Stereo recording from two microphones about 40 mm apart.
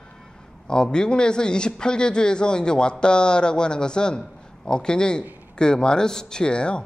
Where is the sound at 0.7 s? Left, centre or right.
Centre.